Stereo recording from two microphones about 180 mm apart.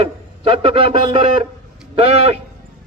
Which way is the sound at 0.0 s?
30° right (ahead or behind).